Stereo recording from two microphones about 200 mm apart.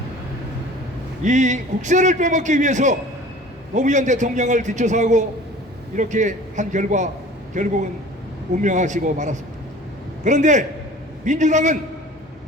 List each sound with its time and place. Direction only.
1.2 s a man's voice: 35° right (ahead or behind)